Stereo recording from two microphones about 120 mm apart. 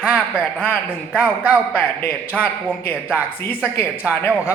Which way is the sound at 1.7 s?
15° left (ahead or behind).